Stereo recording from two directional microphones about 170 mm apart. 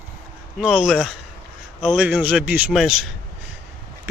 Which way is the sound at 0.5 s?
Centre (ahead or behind).